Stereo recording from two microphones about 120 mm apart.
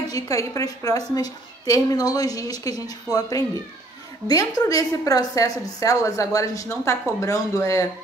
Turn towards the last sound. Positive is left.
turn(degrees=25)  # may be behind; listen again after turning